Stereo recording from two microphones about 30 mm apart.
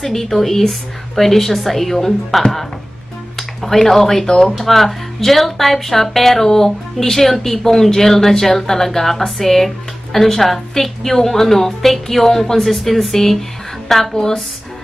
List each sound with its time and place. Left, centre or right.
0.0 s speech: centre
3.3 s a woman's voice: centre
14.1 s a woman's voice: centre